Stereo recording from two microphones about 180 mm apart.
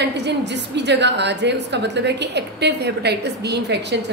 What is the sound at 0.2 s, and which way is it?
A woman's voice, 75° right (ahead or behind).